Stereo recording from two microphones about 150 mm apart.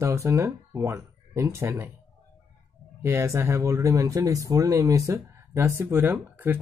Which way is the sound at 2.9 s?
15° right (ahead or behind).